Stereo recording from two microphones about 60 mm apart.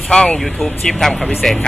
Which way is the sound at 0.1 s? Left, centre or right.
Centre.